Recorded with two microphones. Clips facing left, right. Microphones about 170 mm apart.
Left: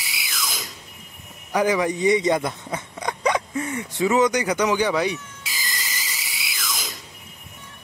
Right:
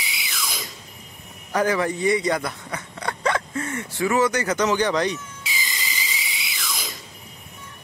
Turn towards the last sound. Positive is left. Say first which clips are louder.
# even
turn(degrees=0)  # may be behind; listen again after turning